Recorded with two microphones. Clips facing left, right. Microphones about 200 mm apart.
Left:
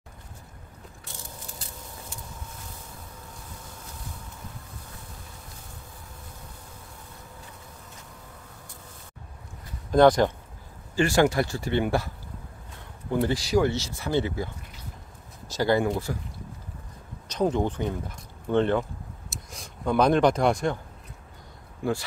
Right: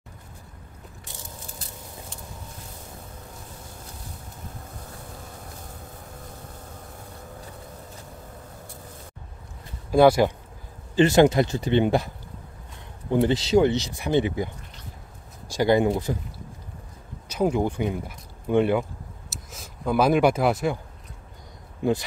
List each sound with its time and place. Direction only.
9.8 s speech: 10° right (ahead or behind)
11.0 s speech: 20° right (ahead or behind)
13.1 s speech: 20° right (ahead or behind)
17.3 s speech: 10° right (ahead or behind)
21.8 s speech: 20° right (ahead or behind)